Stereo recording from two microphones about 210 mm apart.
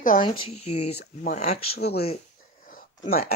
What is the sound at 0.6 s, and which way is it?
Speech, 90° left.